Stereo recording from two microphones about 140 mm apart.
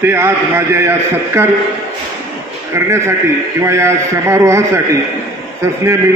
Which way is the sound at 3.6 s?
20° right (ahead or behind).